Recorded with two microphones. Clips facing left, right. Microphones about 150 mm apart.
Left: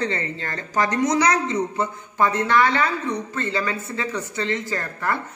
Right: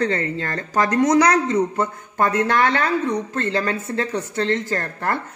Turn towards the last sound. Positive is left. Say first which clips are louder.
# right 2 dB
turn(degrees=-45)  # may be behind; listen again after turning